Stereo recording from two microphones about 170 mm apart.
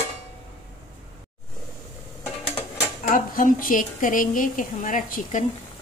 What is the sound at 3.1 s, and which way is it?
A woman's voice, 55° left (ahead or behind).